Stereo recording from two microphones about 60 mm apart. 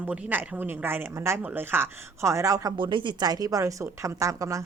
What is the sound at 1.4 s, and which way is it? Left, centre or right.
Speech, right.